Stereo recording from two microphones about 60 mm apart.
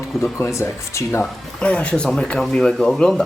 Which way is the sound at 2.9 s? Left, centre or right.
Centre.